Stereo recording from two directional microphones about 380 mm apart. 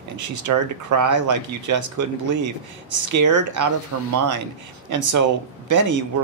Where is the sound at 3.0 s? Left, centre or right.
Right.